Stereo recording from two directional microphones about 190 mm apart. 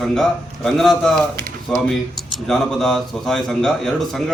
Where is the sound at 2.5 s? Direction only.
Centre (ahead or behind).